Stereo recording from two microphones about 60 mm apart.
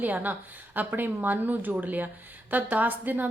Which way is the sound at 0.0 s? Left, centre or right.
Right.